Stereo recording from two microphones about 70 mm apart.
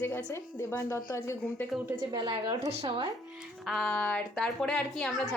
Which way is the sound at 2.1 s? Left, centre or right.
Right.